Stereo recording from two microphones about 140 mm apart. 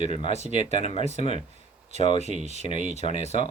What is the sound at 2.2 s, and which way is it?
Speech, 55° right (ahead or behind).